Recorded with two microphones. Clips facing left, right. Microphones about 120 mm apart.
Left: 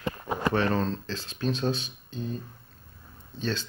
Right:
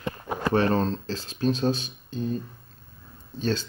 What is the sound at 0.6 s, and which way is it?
Speech, 35° right (ahead or behind).